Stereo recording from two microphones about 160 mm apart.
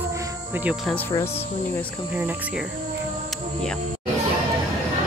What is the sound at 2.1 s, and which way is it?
Cricket, 10° right (ahead or behind).